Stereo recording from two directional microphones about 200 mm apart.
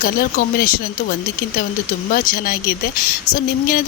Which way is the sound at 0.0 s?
45° left (ahead or behind).